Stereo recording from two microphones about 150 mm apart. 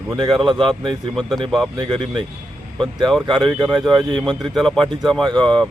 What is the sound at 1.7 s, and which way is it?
Speech, 30° right (ahead or behind).